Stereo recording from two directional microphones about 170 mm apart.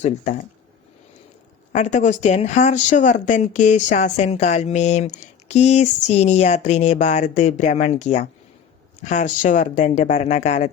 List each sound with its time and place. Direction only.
1.7 s speech: 45° left (ahead or behind)